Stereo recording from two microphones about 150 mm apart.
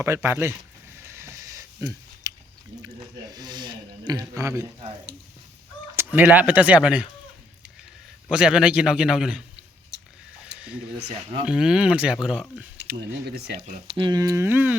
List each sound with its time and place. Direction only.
0.0 s speech: 15° right (ahead or behind)
1.1 s a sound: 20° right (ahead or behind)
2.8 s speech: 25° right (ahead or behind)
6.0 s speech: 10° right (ahead or behind)
8.3 s speech: 5° right (ahead or behind)
9.9 s a sound: 90° right
11.4 s speech: 5° right (ahead or behind)
13.8 s speech: 35° right (ahead or behind); by 14.8 s 15° right (ahead or behind)